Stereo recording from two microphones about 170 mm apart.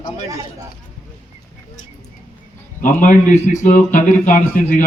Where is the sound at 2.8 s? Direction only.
50° left (ahead or behind).